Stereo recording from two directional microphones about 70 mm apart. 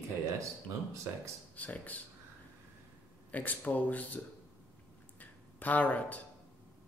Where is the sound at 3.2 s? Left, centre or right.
Left.